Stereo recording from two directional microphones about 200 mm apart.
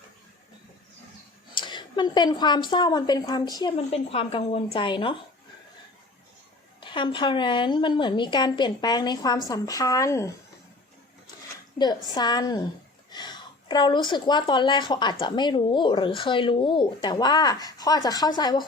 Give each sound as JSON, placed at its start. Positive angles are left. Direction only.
{"t": 1.5, "sound": "a woman's voice", "side_deg": 20}
{"t": 6.7, "sound": "a woman's voice", "side_deg": 25}
{"t": 11.8, "sound": "a woman's voice", "side_deg": 20}